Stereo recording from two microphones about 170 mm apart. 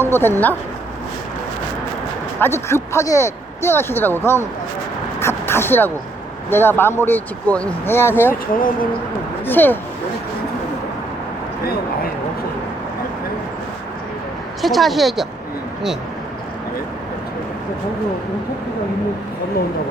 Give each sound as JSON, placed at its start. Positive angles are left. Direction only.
{"t": 0.0, "sound": "speech", "side_deg": 15}
{"t": 2.4, "sound": "speech", "side_deg": 15}
{"t": 5.2, "sound": "a sound", "side_deg": 15}
{"t": 6.5, "sound": "speech", "side_deg": 15}
{"t": 8.5, "sound": "speech", "side_deg": 55}
{"t": 9.5, "sound": "speech", "side_deg": 10}
{"t": 14.6, "sound": "speech", "side_deg": 0}